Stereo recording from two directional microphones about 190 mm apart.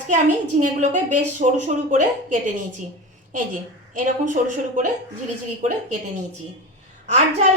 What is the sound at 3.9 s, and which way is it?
Speech, 40° right (ahead or behind).